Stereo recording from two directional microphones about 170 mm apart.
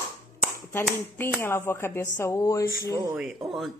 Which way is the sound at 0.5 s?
15° left (ahead or behind).